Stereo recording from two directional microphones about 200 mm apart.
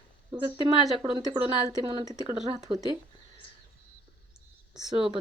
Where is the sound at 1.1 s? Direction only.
20° right (ahead or behind).